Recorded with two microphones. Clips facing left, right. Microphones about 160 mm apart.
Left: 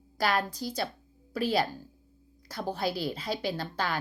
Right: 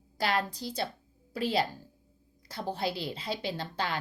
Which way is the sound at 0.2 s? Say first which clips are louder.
Left 2 dB; 25° right (ahead or behind).